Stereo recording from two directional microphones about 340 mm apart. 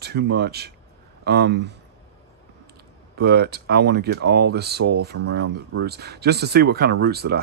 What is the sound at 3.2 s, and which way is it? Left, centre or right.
Speech, right.